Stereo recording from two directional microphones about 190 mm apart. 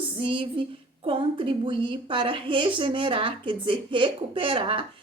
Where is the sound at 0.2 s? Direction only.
30° right (ahead or behind).